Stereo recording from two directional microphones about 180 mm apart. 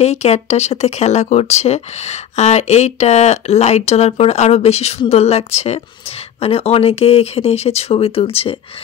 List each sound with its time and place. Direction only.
0.0 s speech: 35° left (ahead or behind)